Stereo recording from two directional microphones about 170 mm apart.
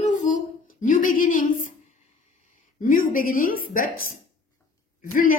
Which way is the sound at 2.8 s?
55° left (ahead or behind).